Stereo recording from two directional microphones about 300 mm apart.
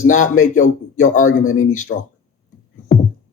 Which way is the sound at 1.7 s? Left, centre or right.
Left.